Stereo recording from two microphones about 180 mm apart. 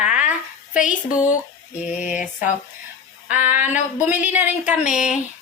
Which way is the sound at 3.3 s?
10° right (ahead or behind).